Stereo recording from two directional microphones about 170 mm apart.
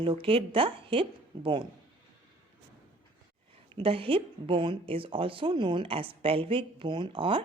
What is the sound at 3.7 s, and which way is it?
Speech, 35° right (ahead or behind).